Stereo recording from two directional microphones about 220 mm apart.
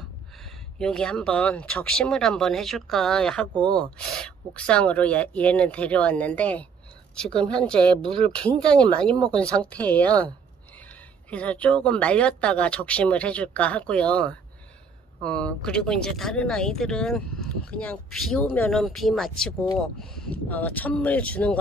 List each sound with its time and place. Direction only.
0.7 s speech: 5° left (ahead or behind)
8.0 s speech: 25° right (ahead or behind)
8.3 s speech: 5° left (ahead or behind)
11.2 s speech: 5° left (ahead or behind)